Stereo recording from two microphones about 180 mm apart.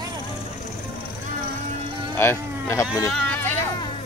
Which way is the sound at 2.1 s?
15° left (ahead or behind).